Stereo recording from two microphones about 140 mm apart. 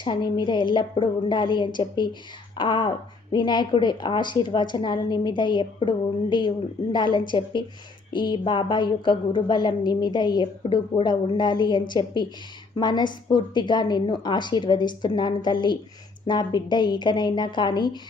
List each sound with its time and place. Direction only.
0.0 s a woman's voice: 35° left (ahead or behind)
6.9 s a woman's voice: 35° left (ahead or behind)